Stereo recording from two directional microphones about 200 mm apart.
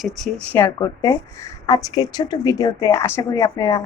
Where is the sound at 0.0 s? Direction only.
Centre (ahead or behind).